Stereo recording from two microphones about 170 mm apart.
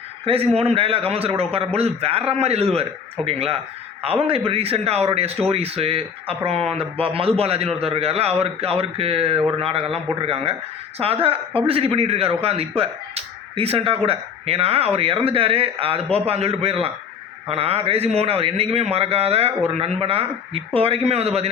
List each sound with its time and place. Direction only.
0.3 s a man's voice: 35° right (ahead or behind)